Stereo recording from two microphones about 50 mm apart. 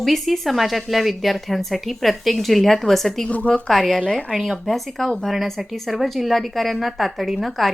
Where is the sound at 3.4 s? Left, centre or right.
Left.